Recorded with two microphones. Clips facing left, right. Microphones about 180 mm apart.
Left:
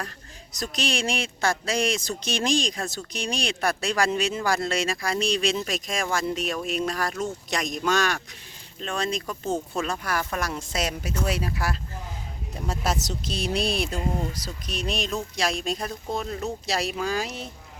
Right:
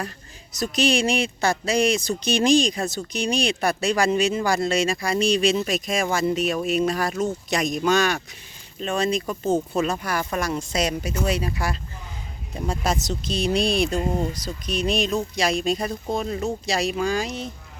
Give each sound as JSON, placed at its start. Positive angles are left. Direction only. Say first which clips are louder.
{"t": 0.5, "sound": "speech", "louder": "right 7 dB", "side_deg": 0}